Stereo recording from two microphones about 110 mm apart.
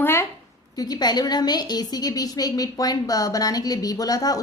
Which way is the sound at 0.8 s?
35° left (ahead or behind).